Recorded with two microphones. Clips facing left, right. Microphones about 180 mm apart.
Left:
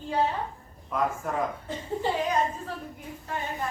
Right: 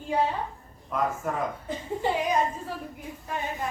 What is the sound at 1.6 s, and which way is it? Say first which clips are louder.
Speech: right 1 dB; 15° right (ahead or behind).